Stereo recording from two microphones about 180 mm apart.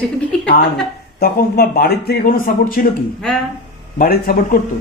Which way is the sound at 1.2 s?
55° left (ahead or behind).